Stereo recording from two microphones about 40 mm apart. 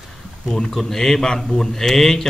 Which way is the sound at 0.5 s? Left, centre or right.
Centre.